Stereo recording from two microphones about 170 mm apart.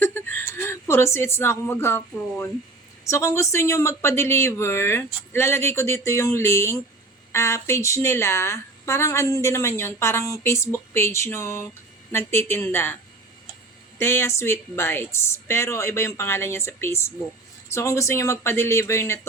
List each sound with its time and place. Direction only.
0.0 s a woman's voice: 10° left (ahead or behind)
14.0 s a woman's voice: 15° left (ahead or behind)